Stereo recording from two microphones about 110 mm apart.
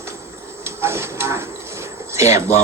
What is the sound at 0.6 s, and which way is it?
Livestock, 25° right (ahead or behind).